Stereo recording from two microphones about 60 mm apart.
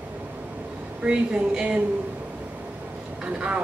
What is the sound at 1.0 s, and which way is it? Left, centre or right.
Speech, centre.